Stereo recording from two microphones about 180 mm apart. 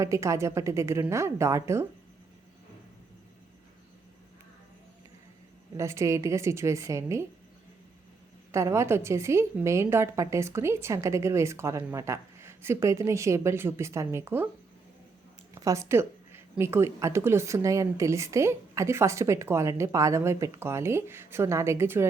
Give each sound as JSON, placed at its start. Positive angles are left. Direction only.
{"t": 0.0, "sound": "speech", "side_deg": -15}
{"t": 5.7, "sound": "speech", "side_deg": -15}
{"t": 8.5, "sound": "speech", "side_deg": -15}
{"t": 15.5, "sound": "speech", "side_deg": -15}